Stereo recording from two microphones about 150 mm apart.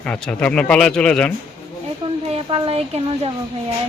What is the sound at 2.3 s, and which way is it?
A woman's voice, 35° right (ahead or behind).